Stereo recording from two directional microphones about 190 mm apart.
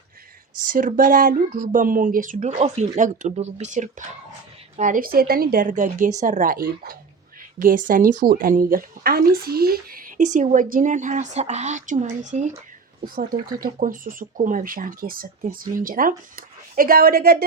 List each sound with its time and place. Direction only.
0.6 s speech: 45° right (ahead or behind)
13.6 s speech: 45° right (ahead or behind)